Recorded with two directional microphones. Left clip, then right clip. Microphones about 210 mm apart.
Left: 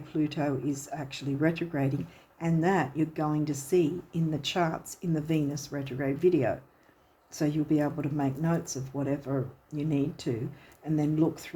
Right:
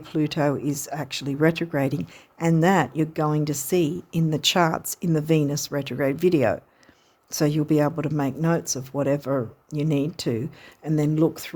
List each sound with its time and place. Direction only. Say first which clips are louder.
0.0 s a woman's voice: right 7 dB; 55° right (ahead or behind)